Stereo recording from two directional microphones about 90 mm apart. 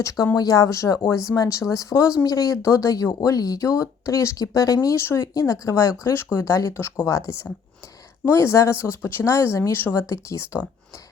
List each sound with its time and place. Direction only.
0.3 s speech: 45° left (ahead or behind)
6.7 s speech: 25° left (ahead or behind)
7.0 s speech: 35° left (ahead or behind)